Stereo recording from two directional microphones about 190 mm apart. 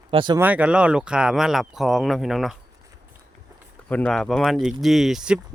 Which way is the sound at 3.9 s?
5° left (ahead or behind).